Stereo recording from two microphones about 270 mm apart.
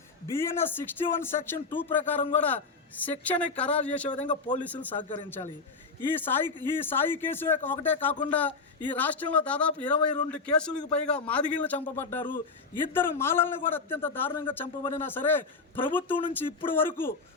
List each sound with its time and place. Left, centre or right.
0.3 s a man's voice: centre
4.1 s speech: left
4.6 s a man's voice: centre
6.0 s a man's voice: centre